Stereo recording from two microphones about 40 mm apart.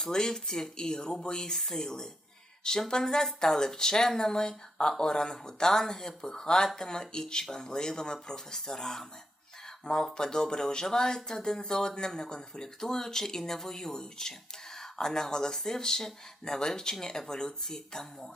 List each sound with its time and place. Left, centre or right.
0.0 s speech: centre
9.6 s a sound: centre
10.2 s speech: centre